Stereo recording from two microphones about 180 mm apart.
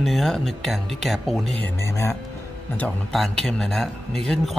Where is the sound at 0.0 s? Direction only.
Centre (ahead or behind).